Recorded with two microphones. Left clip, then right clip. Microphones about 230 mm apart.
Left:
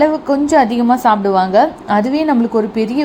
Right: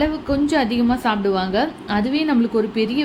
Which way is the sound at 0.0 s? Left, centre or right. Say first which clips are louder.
Left 7 dB; centre.